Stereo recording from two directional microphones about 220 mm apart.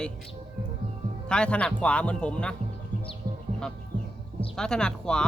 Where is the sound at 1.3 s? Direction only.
5° left (ahead or behind).